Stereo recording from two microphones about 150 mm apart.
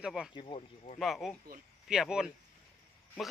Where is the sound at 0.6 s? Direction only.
50° left (ahead or behind).